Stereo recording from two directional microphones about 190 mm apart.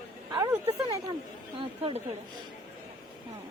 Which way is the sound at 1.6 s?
25° right (ahead or behind).